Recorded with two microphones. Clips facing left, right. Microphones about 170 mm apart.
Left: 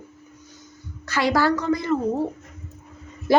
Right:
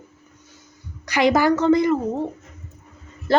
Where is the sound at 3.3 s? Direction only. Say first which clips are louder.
Left 1 dB; 10° left (ahead or behind).